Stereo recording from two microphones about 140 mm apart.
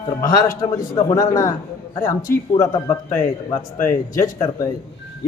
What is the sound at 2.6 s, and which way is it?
A man's voice, 25° left (ahead or behind).